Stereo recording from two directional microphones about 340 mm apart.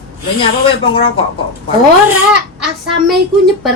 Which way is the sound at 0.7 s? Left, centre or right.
Centre.